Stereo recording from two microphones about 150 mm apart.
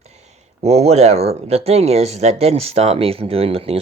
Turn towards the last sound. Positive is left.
turn(degrees=-40)  # may be behind; listen again after turning